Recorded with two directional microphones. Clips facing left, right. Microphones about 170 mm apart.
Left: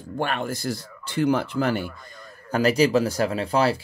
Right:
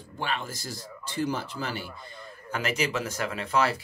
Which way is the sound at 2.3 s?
40° left (ahead or behind).